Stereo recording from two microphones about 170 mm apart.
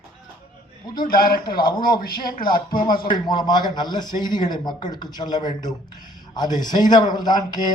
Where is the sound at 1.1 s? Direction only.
55° left (ahead or behind).